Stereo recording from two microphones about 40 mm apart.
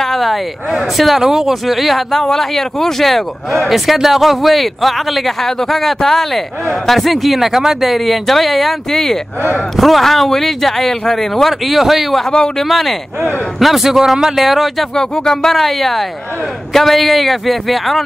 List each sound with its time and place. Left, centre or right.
0.0 s speech: centre
11.6 s speech: centre
15.0 s speech: centre
15.5 s speech: centre